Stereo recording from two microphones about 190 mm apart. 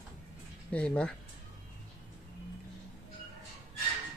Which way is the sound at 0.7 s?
5° left (ahead or behind).